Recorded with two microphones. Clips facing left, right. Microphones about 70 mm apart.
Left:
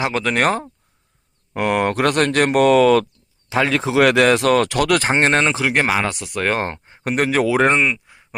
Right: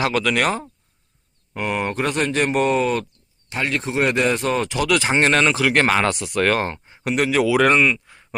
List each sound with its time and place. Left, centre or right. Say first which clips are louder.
0.0 s speech: left 1 dB; left
1.5 s speech: left 5 dB; left
5.7 s speech: right 1 dB; centre
6.6 s speech: left 1 dB; left; by 8.4 s centre